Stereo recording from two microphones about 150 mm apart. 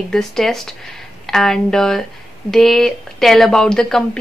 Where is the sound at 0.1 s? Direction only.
Centre (ahead or behind).